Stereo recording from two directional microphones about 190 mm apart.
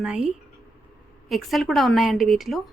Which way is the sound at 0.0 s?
5° right (ahead or behind).